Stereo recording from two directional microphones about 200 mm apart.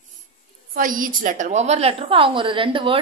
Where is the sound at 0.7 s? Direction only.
45° right (ahead or behind).